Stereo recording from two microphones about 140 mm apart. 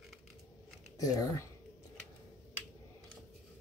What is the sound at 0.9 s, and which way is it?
Speech, 25° left (ahead or behind).